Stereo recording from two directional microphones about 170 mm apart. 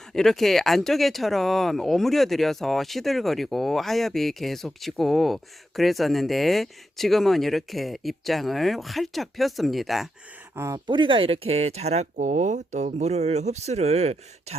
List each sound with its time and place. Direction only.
0.1 s speech: centre (ahead or behind)
10.5 s speech: 15° right (ahead or behind)
10.8 s speech: 30° right (ahead or behind)